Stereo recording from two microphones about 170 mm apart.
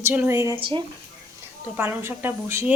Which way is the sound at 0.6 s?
30° right (ahead or behind).